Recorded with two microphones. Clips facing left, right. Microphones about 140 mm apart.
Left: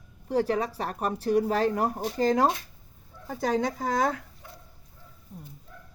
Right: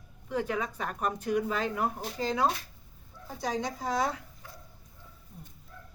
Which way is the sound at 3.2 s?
60° left (ahead or behind).